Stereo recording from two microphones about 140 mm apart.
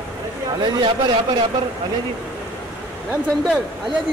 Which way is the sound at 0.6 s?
30° right (ahead or behind).